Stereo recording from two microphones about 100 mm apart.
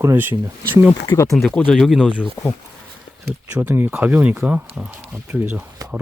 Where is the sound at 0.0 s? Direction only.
25° right (ahead or behind).